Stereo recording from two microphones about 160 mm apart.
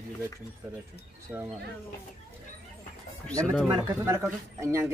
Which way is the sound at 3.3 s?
5° left (ahead or behind).